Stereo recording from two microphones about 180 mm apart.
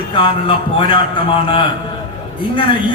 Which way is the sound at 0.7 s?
25° left (ahead or behind).